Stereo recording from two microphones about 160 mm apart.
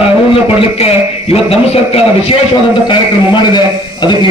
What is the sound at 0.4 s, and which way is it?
A man's voice, 35° left (ahead or behind).